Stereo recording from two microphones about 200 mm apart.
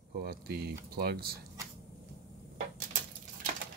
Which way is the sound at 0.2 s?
50° right (ahead or behind).